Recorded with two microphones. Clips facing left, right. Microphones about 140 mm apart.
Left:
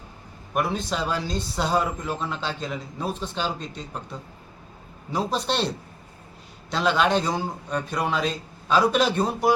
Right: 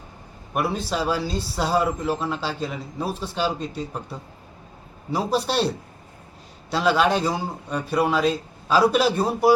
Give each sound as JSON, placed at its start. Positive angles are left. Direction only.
{"t": 0.5, "sound": "speech", "side_deg": -5}
{"t": 5.1, "sound": "a man's voice", "side_deg": -10}